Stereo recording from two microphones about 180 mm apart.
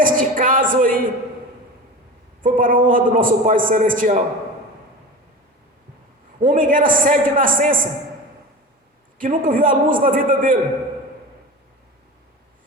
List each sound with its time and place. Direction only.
0.0 s a sound: 50° right (ahead or behind)
2.4 s a man's voice: 50° right (ahead or behind)
6.4 s a man's voice: 50° right (ahead or behind)
9.1 s a man's voice: 50° right (ahead or behind)